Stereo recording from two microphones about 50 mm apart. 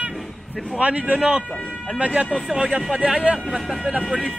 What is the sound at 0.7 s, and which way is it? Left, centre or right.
A man's voice, right.